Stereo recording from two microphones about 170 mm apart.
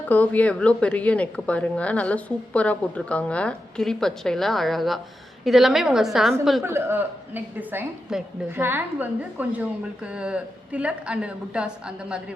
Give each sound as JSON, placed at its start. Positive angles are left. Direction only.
{"t": 0.1, "sound": "a woman's voice", "side_deg": 10}
{"t": 6.6, "sound": "a woman's voice", "side_deg": -15}